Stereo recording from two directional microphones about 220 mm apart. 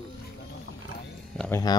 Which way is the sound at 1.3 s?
5° left (ahead or behind).